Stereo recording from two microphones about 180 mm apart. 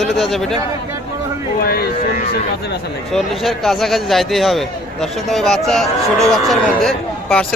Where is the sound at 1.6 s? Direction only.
55° left (ahead or behind).